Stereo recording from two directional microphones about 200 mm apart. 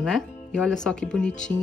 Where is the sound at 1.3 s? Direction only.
40° left (ahead or behind).